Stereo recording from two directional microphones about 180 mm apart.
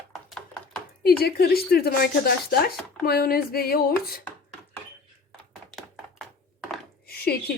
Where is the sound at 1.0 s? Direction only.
60° left (ahead or behind).